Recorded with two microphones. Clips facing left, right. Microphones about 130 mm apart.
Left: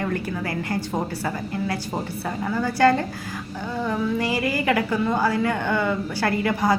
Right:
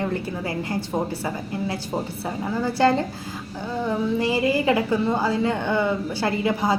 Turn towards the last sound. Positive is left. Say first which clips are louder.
# left 1 dB
turn(degrees=-20)  # may be behind; listen again after turning